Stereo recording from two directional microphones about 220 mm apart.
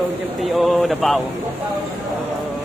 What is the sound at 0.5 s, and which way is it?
Speech, centre (ahead or behind).